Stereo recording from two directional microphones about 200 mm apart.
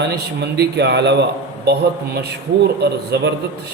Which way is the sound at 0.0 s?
55° right (ahead or behind).